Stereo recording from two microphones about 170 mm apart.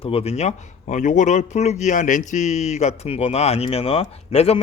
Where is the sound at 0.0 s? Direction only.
35° left (ahead or behind).